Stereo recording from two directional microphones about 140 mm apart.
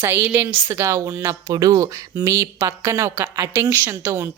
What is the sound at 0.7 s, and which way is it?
A woman's voice, 20° right (ahead or behind).